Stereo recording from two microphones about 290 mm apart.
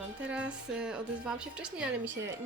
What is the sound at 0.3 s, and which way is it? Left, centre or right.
A woman's voice, centre.